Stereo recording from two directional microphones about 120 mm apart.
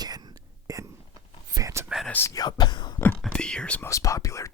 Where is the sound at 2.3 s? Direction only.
35° left (ahead or behind).